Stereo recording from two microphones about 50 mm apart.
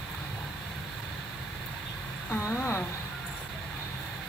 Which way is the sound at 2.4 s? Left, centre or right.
Left.